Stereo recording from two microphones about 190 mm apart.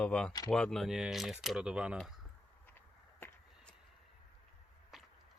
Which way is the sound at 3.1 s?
10° left (ahead or behind).